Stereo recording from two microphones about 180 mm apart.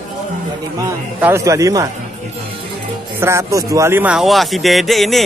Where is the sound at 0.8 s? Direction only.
15° right (ahead or behind).